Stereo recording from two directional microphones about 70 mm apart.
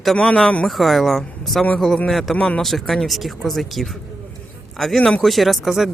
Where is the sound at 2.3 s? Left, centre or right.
Centre.